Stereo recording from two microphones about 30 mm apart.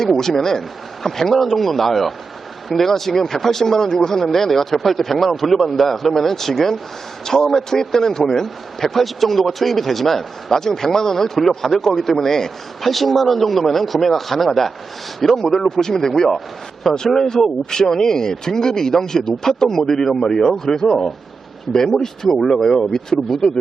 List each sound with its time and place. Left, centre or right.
0.0 s a man's voice: centre
12.8 s a man's voice: centre